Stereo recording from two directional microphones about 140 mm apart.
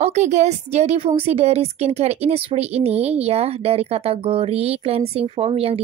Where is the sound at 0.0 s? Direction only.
55° right (ahead or behind).